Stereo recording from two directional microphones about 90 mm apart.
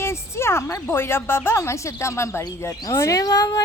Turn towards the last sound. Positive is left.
turn(degrees=45)  # may be behind; listen again after turning